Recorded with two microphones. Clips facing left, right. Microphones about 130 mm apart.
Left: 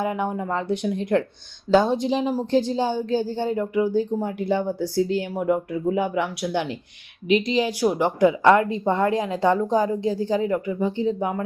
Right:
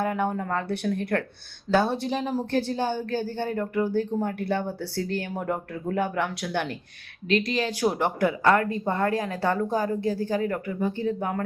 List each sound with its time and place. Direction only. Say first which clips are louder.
0.0 s a woman's voice: left 1 dB; 15° left (ahead or behind)